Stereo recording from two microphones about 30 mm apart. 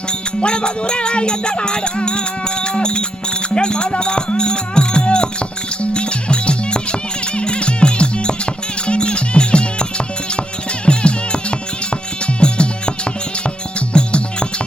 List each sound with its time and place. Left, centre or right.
0.1 s music: left
10.8 s music: left
13.9 s music: left